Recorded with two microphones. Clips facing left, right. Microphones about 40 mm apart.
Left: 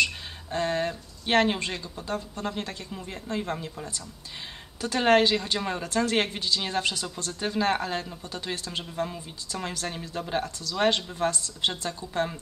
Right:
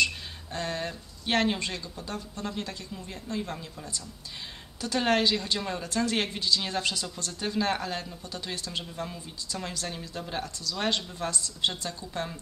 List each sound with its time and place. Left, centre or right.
0.0 s speech: left
7.3 s speech: centre
10.4 s speech: left